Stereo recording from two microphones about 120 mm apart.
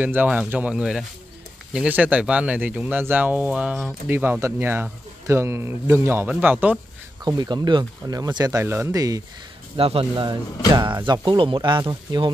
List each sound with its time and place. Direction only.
0.0 s speech: 15° right (ahead or behind)
7.2 s speech: 35° right (ahead or behind)
8.6 s speech: 20° right (ahead or behind)
9.8 s speech: 55° right (ahead or behind)